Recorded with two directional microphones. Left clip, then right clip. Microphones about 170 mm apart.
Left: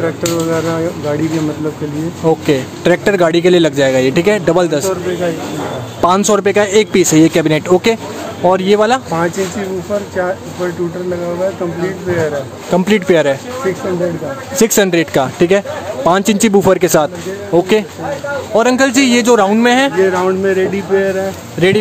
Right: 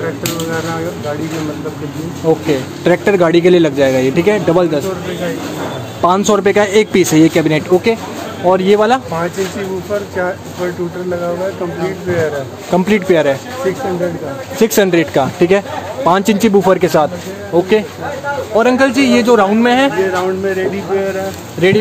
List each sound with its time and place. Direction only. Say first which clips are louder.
2.4 s speech: left 1 dB; 20° left (ahead or behind)
5.9 s speech: even; 25° left (ahead or behind)
6.4 s speech: even; 10° left (ahead or behind); by 8.7 s 25° left (ahead or behind)
8.7 s speech: even; 10° left (ahead or behind)
12.7 s speech: left 1 dB; 15° left (ahead or behind)
14.6 s speech: even; 20° left (ahead or behind)
20.4 s speech: left 2 dB; 70° left (ahead or behind)
21.6 s speech: even; 20° left (ahead or behind)